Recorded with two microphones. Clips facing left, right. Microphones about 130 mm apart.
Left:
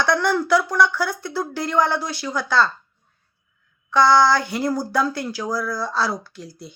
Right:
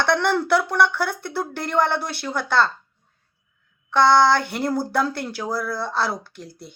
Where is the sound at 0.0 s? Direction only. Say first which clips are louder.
Even; 60° right (ahead or behind).